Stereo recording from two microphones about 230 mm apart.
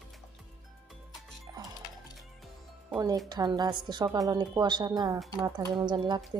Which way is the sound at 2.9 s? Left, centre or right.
Centre.